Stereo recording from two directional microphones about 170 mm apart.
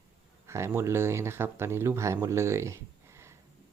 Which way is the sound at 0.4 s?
15° right (ahead or behind).